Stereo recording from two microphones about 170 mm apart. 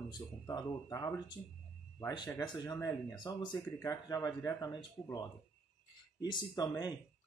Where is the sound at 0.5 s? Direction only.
20° left (ahead or behind).